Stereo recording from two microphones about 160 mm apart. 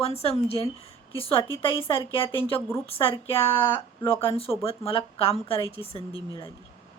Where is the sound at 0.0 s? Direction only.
40° left (ahead or behind).